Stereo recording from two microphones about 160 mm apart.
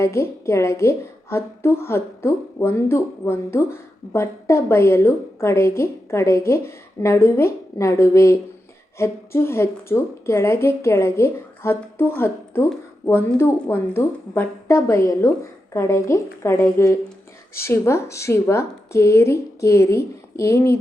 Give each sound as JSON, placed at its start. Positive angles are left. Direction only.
{"t": 0.0, "sound": "a woman's voice", "side_deg": 15}